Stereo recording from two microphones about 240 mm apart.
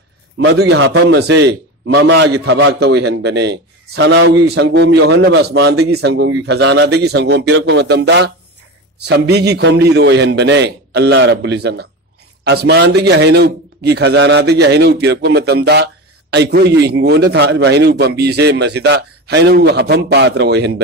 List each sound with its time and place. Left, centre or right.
0.4 s a man's voice: right